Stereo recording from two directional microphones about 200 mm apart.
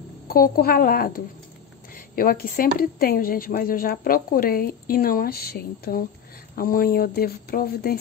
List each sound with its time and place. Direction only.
0.3 s speech: 50° left (ahead or behind)